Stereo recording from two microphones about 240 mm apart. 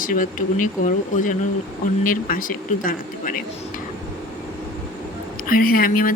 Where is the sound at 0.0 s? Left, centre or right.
Left.